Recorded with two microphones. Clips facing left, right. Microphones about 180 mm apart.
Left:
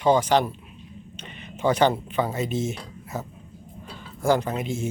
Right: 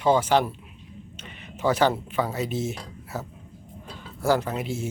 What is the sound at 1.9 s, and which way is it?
Speech, 5° right (ahead or behind).